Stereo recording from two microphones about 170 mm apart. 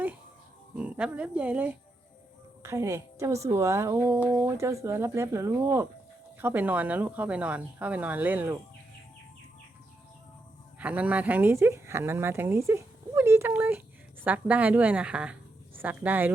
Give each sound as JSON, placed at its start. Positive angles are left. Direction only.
{"t": 0.8, "sound": "speech", "side_deg": -5}
{"t": 10.8, "sound": "a woman's voice", "side_deg": -10}